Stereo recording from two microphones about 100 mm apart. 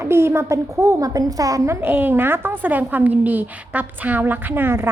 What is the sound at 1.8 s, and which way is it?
A woman's voice, 20° right (ahead or behind).